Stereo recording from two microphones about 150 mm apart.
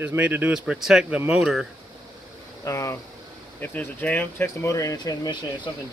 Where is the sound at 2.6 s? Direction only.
20° left (ahead or behind).